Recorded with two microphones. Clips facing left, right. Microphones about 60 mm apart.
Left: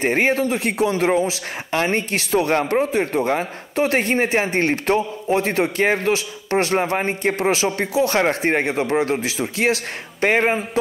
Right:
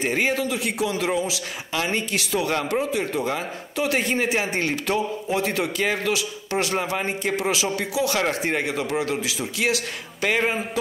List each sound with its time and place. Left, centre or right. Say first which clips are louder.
0.0 s a man's voice: left 5 dB; left